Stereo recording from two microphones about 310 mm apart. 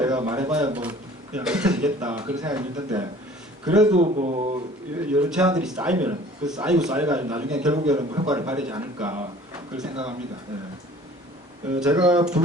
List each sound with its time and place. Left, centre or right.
0.0 s a man's voice: centre
3.9 s speech: right
4.9 s a man's voice: centre
11.8 s speech: centre